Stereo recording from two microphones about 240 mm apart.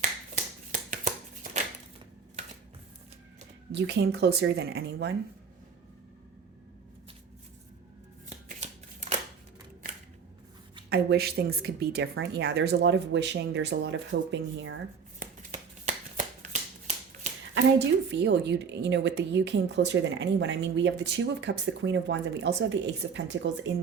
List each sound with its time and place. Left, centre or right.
0.0 s finger snapping: right
3.7 s a woman's voice: right
8.3 s shuffling cards: right
10.8 s a woman's voice: right
15.2 s finger snapping: right
17.5 s a woman's voice: right